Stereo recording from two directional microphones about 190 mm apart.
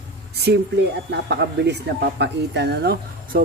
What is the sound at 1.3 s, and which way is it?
Speech, 65° right (ahead or behind).